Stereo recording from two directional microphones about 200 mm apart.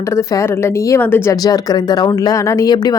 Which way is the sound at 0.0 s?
15° left (ahead or behind).